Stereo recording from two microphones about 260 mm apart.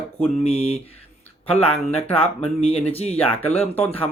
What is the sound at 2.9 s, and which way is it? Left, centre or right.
Speech, left.